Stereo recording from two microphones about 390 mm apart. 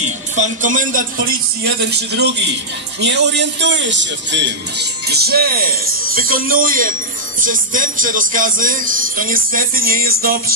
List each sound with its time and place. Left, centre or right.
0.4 s speech: centre